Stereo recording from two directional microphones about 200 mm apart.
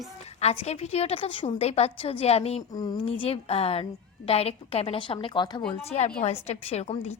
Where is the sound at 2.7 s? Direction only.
20° left (ahead or behind).